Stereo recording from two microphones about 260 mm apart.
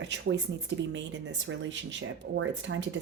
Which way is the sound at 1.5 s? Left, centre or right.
Right.